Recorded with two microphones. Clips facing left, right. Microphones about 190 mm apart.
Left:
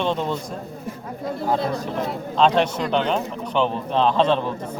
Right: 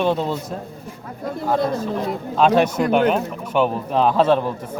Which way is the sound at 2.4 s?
10° right (ahead or behind).